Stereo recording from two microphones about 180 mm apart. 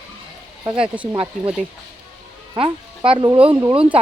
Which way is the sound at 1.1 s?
30° right (ahead or behind).